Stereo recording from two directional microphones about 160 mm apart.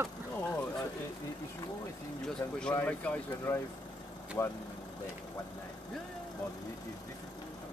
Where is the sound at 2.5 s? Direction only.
10° left (ahead or behind).